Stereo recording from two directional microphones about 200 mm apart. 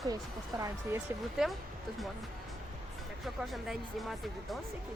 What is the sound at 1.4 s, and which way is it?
Speech, centre (ahead or behind).